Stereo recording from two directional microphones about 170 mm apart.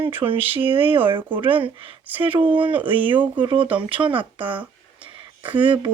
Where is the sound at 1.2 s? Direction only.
10° right (ahead or behind).